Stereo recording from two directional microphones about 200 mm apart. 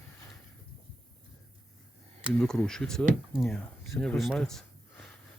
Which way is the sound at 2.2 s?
Centre (ahead or behind).